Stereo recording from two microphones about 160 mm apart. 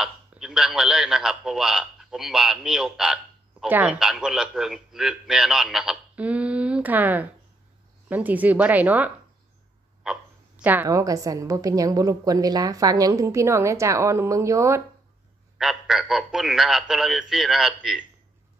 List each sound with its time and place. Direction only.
0.0 s a man's voice: 5° right (ahead or behind); by 14.8 s 20° right (ahead or behind)
15.5 s a man's voice: 5° right (ahead or behind)